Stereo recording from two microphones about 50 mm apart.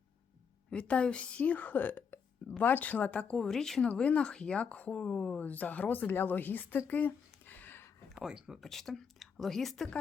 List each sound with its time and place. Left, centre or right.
0.7 s speech: left
3.3 s a woman's voice: centre
4.0 s speech: left
8.2 s speech: centre
8.6 s speech: centre